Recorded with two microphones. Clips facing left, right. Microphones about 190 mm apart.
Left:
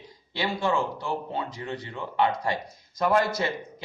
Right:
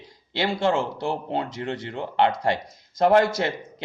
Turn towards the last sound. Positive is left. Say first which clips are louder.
# right 2 dB
turn(degrees=-85)